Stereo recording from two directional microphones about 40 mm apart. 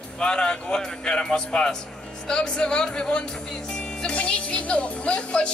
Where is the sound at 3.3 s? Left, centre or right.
Centre.